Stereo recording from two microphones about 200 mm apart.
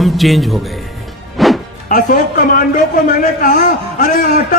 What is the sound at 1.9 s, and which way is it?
A man's voice, 45° left (ahead or behind).